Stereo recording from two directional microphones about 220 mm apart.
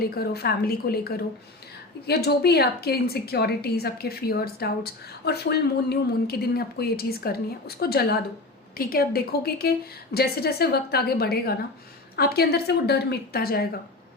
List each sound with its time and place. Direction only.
0.0 s a woman's voice: 45° left (ahead or behind)